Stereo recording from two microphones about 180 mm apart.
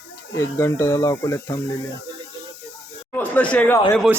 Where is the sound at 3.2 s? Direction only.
10° left (ahead or behind).